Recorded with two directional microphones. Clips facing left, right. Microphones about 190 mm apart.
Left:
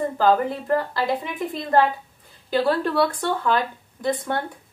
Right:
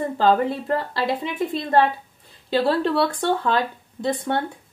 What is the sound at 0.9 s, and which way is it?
Speech, 25° right (ahead or behind).